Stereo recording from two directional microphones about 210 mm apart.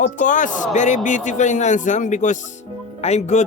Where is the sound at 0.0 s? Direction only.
35° left (ahead or behind).